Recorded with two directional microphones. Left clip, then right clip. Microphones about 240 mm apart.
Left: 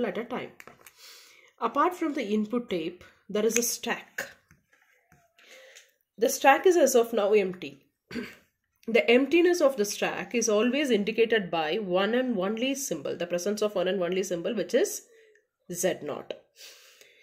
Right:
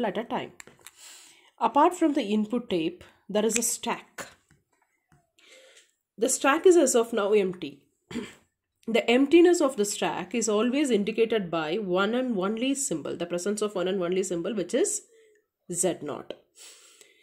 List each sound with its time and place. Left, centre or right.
0.0 s speech: right
6.1 s speech: right